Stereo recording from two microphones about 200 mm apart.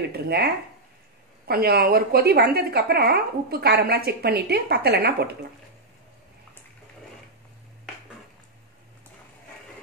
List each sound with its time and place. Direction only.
0.1 s speech: 55° right (ahead or behind)
1.5 s speech: 50° right (ahead or behind)